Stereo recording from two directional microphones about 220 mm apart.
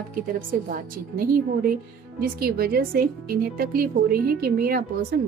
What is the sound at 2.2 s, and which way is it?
Speech, 45° right (ahead or behind).